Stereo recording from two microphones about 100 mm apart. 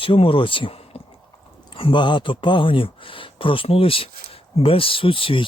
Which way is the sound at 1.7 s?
55° left (ahead or behind).